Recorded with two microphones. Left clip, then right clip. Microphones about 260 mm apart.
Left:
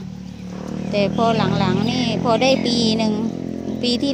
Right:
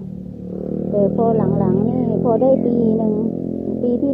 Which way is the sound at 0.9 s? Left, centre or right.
Left.